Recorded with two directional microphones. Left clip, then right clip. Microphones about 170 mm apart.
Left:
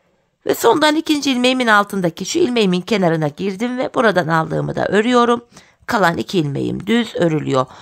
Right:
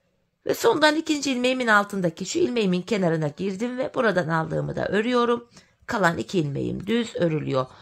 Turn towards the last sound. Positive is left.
turn(degrees=40)  # may be behind; listen again after turning